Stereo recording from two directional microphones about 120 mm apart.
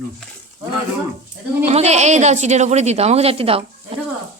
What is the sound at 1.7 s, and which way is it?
A woman's voice, 65° right (ahead or behind).